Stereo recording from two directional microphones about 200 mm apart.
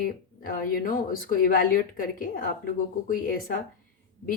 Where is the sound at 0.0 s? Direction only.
45° left (ahead or behind).